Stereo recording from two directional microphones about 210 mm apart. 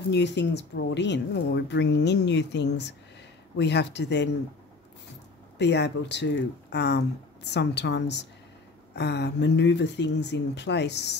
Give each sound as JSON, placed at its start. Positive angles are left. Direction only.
{"t": 0.1, "sound": "speech", "side_deg": 55}
{"t": 5.6, "sound": "speech", "side_deg": 55}